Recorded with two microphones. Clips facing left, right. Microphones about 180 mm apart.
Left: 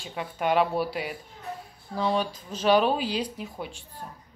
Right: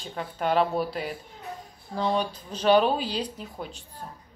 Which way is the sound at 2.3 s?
35° right (ahead or behind).